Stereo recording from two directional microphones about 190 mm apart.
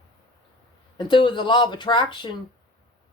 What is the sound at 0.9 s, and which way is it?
Speech, 25° left (ahead or behind).